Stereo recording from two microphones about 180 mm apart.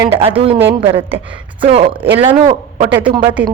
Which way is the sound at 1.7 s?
35° right (ahead or behind).